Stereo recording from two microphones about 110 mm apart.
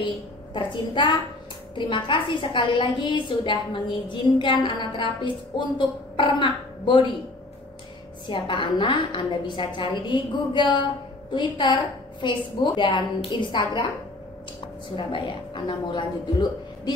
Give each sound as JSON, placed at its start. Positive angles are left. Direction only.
{"t": 0.0, "sound": "a woman's voice", "side_deg": 45}
{"t": 8.3, "sound": "a woman's voice", "side_deg": 50}
{"t": 15.0, "sound": "a woman's voice", "side_deg": 50}